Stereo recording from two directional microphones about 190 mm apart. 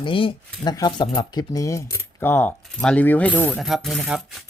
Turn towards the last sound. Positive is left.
turn(degrees=0)  # may be behind; listen again after turning